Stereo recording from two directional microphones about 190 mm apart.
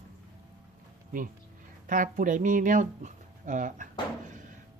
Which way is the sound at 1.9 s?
45° right (ahead or behind).